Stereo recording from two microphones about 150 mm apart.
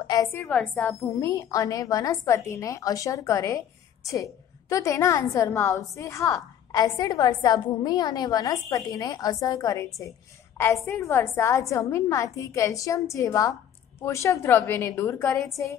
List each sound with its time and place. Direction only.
0.0 s a woman's voice: 25° left (ahead or behind)
0.5 s a woman's voice: 5° left (ahead or behind)
1.0 s a woman's voice: 20° left (ahead or behind)